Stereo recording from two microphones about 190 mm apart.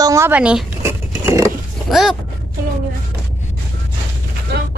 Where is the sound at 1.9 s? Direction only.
Centre (ahead or behind).